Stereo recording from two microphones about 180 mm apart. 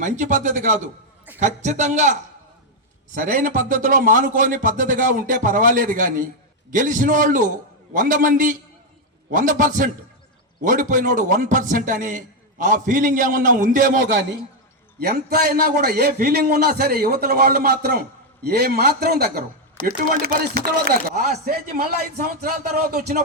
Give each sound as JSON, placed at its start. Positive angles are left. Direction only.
{"t": 0.0, "sound": "a man's voice", "side_deg": -45}
{"t": 14.9, "sound": "chopping", "side_deg": -60}